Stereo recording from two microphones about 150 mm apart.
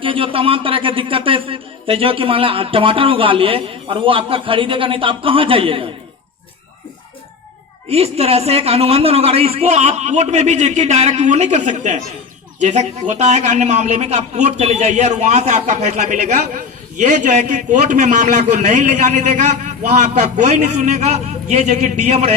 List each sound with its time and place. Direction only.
0.0 s speech: 35° right (ahead or behind)
7.9 s a man's voice: 45° right (ahead or behind)